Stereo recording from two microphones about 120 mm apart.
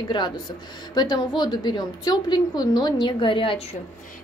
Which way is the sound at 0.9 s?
35° left (ahead or behind).